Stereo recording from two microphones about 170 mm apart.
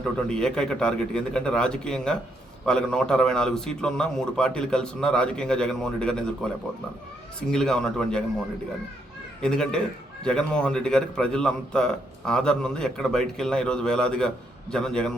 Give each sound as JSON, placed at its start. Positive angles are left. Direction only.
{"t": 0.3, "sound": "a man's voice", "side_deg": 5}
{"t": 7.5, "sound": "a man's voice", "side_deg": 5}
{"t": 9.4, "sound": "a man's voice", "side_deg": 5}